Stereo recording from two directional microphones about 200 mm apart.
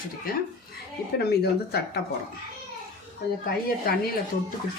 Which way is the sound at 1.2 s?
55° left (ahead or behind).